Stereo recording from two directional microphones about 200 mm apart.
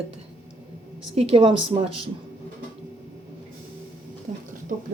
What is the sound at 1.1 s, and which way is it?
Speech, 30° right (ahead or behind).